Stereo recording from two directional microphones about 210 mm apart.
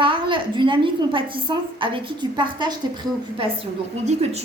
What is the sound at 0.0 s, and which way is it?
A woman's voice, 25° right (ahead or behind).